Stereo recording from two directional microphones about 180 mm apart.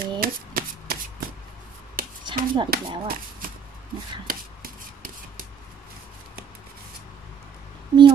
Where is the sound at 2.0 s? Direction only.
50° right (ahead or behind).